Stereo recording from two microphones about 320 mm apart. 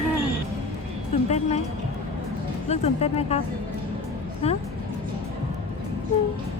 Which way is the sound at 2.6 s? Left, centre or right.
Centre.